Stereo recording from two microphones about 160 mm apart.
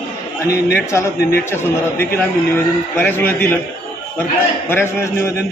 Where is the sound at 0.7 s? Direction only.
15° left (ahead or behind).